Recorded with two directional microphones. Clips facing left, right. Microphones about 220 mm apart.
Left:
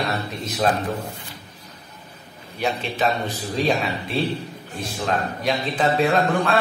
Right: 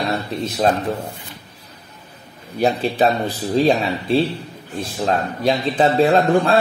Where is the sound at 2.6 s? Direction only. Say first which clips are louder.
Right 7 dB; 35° right (ahead or behind).